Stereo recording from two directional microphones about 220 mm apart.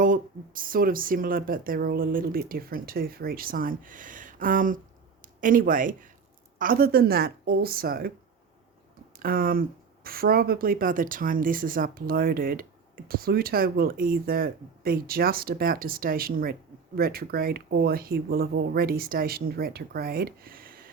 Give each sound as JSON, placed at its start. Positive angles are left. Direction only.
{"t": 0.0, "sound": "speech", "side_deg": -40}
{"t": 9.1, "sound": "speech", "side_deg": -40}